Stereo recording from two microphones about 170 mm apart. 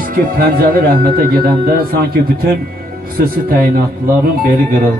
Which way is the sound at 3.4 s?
60° right (ahead or behind).